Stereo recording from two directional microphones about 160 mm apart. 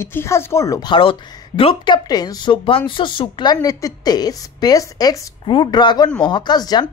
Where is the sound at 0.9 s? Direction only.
35° left (ahead or behind).